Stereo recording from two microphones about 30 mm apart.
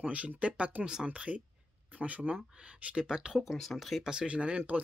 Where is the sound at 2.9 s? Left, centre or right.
Right.